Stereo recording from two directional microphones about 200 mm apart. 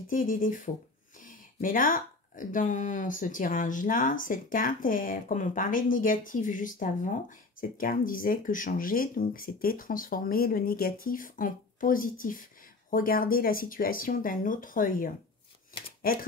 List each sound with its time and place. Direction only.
0.1 s speech: 45° left (ahead or behind)